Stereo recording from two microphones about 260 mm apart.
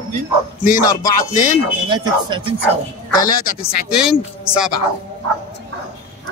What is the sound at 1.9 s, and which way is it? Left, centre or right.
Speech, centre.